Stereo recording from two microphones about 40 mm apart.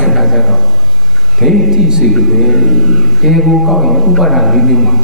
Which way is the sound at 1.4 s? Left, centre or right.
Centre.